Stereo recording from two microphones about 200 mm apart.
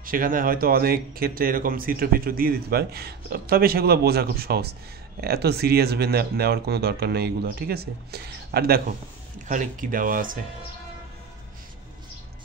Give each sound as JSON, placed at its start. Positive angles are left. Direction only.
{"t": 0.0, "sound": "speech", "side_deg": -45}